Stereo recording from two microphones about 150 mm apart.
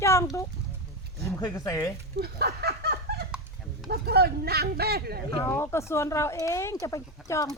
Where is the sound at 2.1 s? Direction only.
90° right.